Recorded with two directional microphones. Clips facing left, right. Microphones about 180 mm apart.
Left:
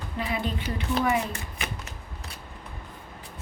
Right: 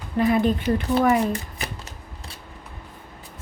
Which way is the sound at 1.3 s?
35° right (ahead or behind).